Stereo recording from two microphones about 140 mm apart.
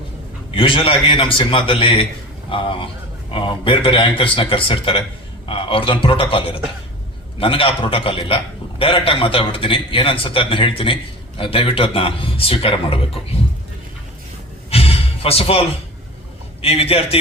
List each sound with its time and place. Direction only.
0.5 s a man's voice: 40° left (ahead or behind)
14.7 s music: 45° left (ahead or behind)
16.6 s a man's voice: 45° left (ahead or behind)